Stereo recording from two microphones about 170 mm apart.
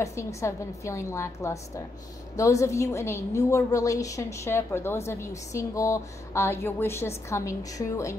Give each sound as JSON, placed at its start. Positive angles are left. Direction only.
{"t": 0.0, "sound": "a woman's voice", "side_deg": 15}